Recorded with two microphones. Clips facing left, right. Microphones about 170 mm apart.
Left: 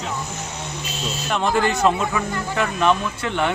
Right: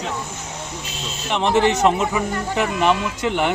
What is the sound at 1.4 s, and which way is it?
Speech, 25° right (ahead or behind).